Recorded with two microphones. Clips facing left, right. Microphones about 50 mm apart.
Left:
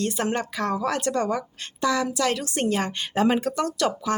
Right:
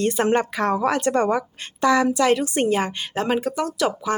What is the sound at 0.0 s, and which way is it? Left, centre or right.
A woman's voice, right.